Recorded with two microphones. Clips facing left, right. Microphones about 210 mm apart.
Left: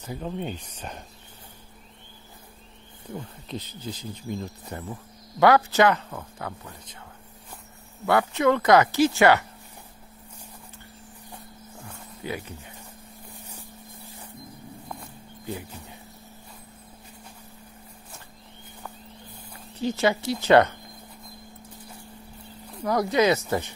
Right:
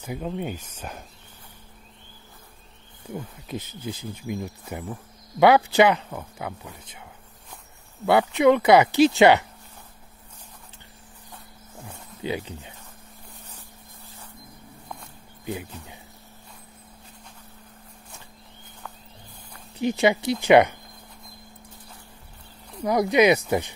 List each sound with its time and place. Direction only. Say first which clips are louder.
0.0 s speech: right 2 dB; 10° right (ahead or behind)
3.1 s speech: right 2 dB; 10° right (ahead or behind)
12.2 s speech: right 4 dB; 20° right (ahead or behind)
19.8 s speech: right 3 dB; 15° right (ahead or behind)
22.8 s speech: right 3 dB; 15° right (ahead or behind)